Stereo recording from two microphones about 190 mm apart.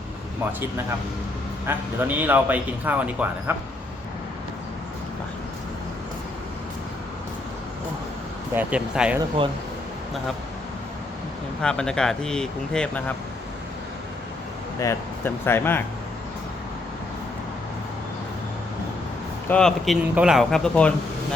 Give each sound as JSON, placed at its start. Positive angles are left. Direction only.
{"t": 1.6, "sound": "a man's voice", "side_deg": -10}
{"t": 8.5, "sound": "a man's voice", "side_deg": -5}
{"t": 11.6, "sound": "speech", "side_deg": 5}
{"t": 14.8, "sound": "speech", "side_deg": 15}
{"t": 19.5, "sound": "speech", "side_deg": 5}